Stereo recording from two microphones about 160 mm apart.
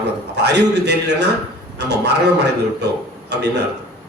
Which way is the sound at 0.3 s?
90° right.